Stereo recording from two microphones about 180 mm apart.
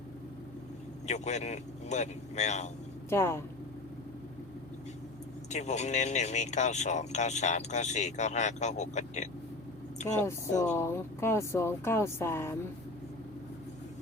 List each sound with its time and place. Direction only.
1.0 s speech: 40° left (ahead or behind)
3.1 s speech: 15° left (ahead or behind)
5.5 s speech: 40° left (ahead or behind)
10.7 s speech: 15° left (ahead or behind)